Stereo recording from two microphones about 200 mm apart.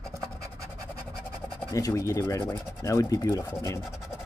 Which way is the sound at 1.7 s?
15° left (ahead or behind).